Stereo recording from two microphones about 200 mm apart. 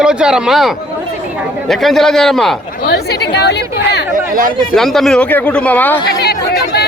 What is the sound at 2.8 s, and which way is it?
Speech, 55° left (ahead or behind).